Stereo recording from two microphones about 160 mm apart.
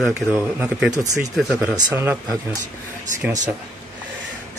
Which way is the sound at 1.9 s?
15° right (ahead or behind).